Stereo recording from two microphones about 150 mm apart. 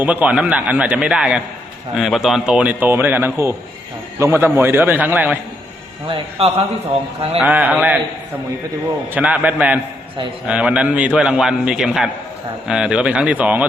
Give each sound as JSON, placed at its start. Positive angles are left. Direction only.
{"t": 0.0, "sound": "a man's voice", "side_deg": -10}
{"t": 6.1, "sound": "a man's voice", "side_deg": -40}
{"t": 7.3, "sound": "a man's voice", "side_deg": -10}
{"t": 9.1, "sound": "a man's voice", "side_deg": -10}